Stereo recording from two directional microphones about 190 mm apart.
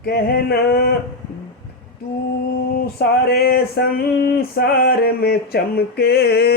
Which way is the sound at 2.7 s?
55° left (ahead or behind).